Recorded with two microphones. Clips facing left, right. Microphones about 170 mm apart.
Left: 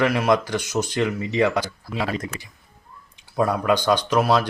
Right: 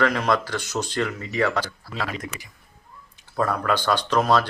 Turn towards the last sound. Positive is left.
turn(degrees=10)  # may be behind; listen again after turning